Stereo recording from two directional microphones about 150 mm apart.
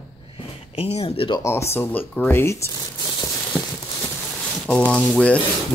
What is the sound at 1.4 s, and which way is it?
Speech, 20° left (ahead or behind).